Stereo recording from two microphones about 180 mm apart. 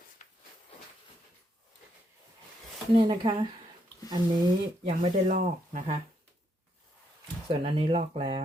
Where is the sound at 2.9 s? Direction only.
25° right (ahead or behind).